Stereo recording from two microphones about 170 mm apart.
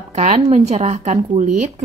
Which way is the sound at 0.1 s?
40° right (ahead or behind).